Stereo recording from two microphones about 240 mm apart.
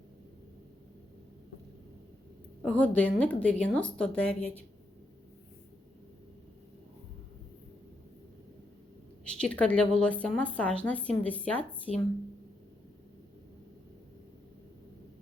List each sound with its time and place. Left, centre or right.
2.6 s speech: centre
9.2 s speech: centre
11.9 s speech: left